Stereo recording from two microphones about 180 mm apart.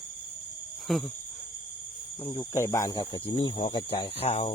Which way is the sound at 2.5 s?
15° left (ahead or behind).